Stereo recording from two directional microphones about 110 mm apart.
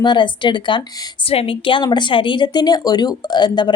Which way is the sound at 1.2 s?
55° left (ahead or behind).